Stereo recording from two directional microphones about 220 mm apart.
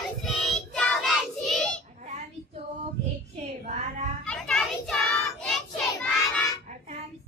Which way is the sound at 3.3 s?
30° right (ahead or behind).